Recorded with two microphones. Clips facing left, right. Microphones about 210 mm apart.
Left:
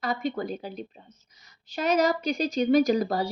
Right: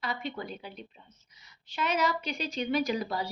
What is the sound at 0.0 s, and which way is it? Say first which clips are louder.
A woman's voice: left 7 dB; 40° left (ahead or behind).